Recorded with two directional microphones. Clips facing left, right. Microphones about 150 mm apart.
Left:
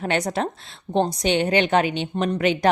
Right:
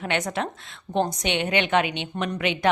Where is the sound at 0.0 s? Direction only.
35° left (ahead or behind).